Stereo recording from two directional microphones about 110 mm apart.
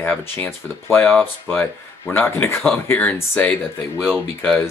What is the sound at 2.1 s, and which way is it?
Speech, 20° left (ahead or behind).